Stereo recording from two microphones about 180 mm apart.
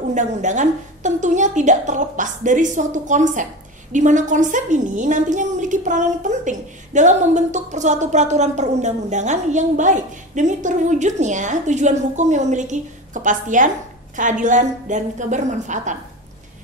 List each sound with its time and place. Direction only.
0.1 s a woman's voice: 40° right (ahead or behind)